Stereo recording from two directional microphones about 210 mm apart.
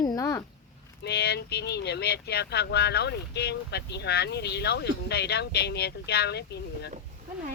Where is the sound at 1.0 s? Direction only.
50° left (ahead or behind).